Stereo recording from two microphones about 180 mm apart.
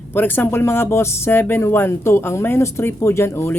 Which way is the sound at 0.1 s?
10° left (ahead or behind).